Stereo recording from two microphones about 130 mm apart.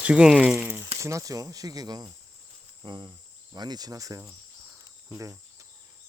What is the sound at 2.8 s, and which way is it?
Cricket, 35° right (ahead or behind).